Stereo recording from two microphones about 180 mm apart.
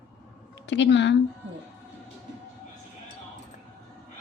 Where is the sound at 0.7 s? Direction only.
80° left.